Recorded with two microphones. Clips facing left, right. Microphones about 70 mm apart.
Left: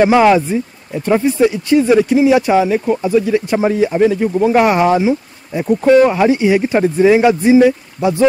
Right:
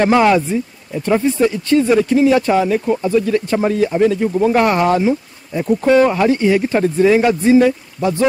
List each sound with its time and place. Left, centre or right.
0.0 s speech: centre